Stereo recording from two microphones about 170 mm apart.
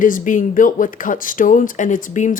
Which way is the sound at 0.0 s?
50° left (ahead or behind).